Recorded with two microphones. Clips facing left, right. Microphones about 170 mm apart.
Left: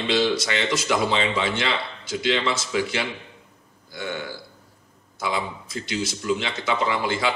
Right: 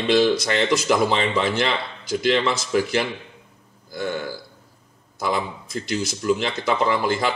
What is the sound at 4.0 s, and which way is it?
Burping, 40° right (ahead or behind).